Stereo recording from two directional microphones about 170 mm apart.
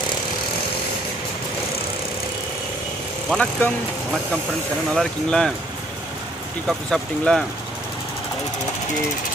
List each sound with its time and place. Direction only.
3.2 s speech: 5° left (ahead or behind)
4.9 s speech: 5° left (ahead or behind)
6.7 s speech: 5° left (ahead or behind)